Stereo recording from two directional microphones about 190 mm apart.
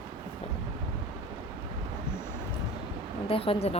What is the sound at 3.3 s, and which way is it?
Speech, 30° left (ahead or behind).